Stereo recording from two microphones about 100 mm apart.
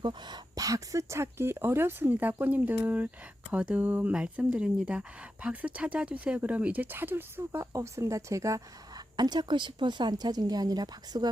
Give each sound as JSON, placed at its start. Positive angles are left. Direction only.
{"t": 0.0, "sound": "speech", "side_deg": -50}
{"t": 9.1, "sound": "speech", "side_deg": -45}